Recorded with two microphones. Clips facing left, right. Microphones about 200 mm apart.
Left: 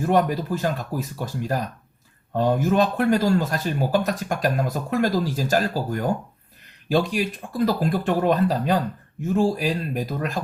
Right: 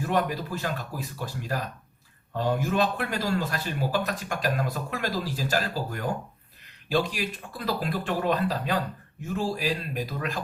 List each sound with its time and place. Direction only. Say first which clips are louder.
0.0 s speech: left 6 dB; 45° left (ahead or behind)